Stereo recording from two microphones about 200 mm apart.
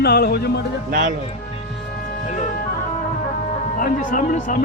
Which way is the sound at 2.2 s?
35° left (ahead or behind).